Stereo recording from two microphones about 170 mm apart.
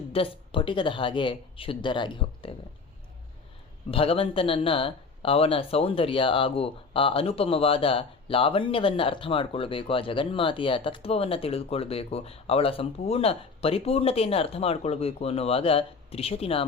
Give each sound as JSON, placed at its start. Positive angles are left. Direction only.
{"t": 0.1, "sound": "speech", "side_deg": 30}
{"t": 3.9, "sound": "speech", "side_deg": 35}